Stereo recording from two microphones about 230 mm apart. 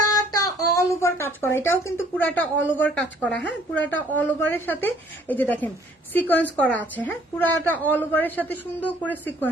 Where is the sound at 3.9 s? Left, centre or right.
Centre.